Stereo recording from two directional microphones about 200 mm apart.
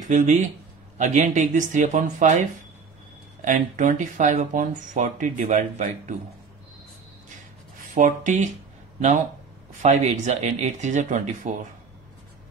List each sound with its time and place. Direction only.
0.0 s speech: 40° right (ahead or behind)
3.4 s speech: 40° right (ahead or behind)
7.9 s speech: 40° right (ahead or behind)
9.8 s speech: 35° right (ahead or behind)